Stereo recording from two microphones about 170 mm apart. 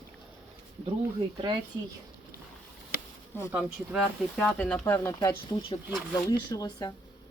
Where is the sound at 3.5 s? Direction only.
5° right (ahead or behind); by 5.4 s 15° left (ahead or behind).